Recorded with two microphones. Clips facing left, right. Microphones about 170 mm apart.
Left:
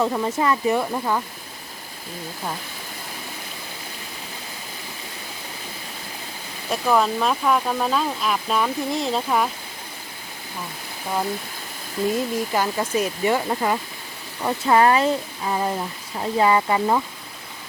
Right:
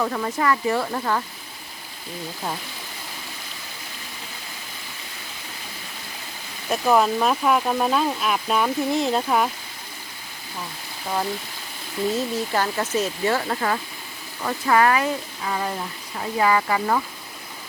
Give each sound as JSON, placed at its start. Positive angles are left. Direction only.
{"t": 0.0, "sound": "speech", "side_deg": 20}
{"t": 6.7, "sound": "speech", "side_deg": -5}
{"t": 12.1, "sound": "speech", "side_deg": 10}